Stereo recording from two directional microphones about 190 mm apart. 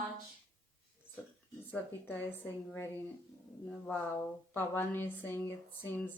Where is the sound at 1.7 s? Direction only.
10° left (ahead or behind).